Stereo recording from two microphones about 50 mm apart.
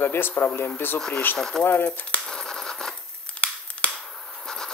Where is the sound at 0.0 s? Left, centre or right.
Left.